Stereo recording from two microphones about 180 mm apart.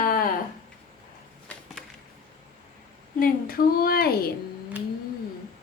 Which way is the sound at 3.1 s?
55° left (ahead or behind).